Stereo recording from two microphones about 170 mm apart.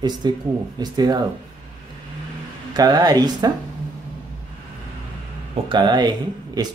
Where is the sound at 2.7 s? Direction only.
25° right (ahead or behind).